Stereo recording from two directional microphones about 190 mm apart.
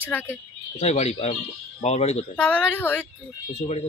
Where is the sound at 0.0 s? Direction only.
10° left (ahead or behind).